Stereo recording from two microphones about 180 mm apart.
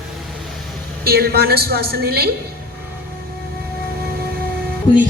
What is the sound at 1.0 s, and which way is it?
A woman's voice, 60° right (ahead or behind).